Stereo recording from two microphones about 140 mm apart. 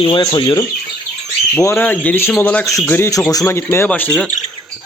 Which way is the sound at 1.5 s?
15° left (ahead or behind).